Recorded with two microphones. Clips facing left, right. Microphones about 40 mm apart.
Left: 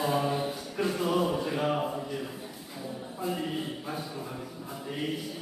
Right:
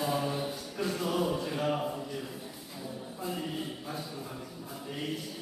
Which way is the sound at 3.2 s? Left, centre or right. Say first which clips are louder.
Left 4 dB; centre.